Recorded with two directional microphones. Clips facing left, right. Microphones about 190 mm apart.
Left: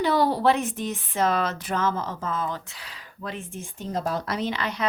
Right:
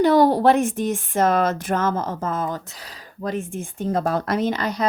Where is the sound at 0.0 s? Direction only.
50° right (ahead or behind).